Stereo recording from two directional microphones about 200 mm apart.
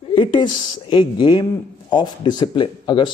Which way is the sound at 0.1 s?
25° left (ahead or behind).